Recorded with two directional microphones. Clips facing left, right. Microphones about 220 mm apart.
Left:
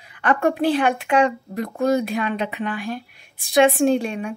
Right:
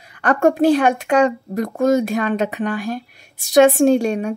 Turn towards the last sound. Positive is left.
turn(degrees=-45)  # may be behind; listen again after turning